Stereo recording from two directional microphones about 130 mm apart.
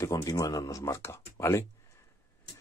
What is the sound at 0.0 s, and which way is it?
Speech, 25° left (ahead or behind).